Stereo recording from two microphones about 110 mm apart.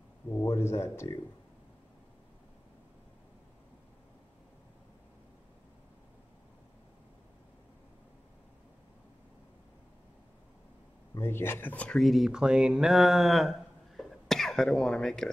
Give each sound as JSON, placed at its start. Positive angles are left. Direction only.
{"t": 0.3, "sound": "speech", "side_deg": 25}
{"t": 11.1, "sound": "speech", "side_deg": 20}
{"t": 12.0, "sound": "speech", "side_deg": 0}